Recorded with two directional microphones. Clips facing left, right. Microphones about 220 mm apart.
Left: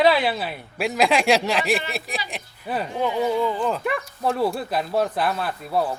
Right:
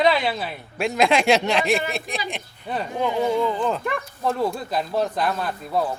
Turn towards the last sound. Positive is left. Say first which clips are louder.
# even
turn(degrees=5)  # may be behind; listen again after turning